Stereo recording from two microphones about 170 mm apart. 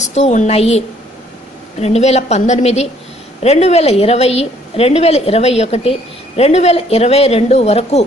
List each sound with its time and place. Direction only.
0.1 s a woman's voice: 45° left (ahead or behind)